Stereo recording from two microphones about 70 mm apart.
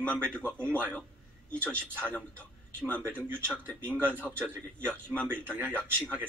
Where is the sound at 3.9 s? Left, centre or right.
Right.